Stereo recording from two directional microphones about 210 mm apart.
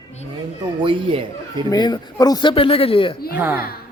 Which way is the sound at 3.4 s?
10° right (ahead or behind).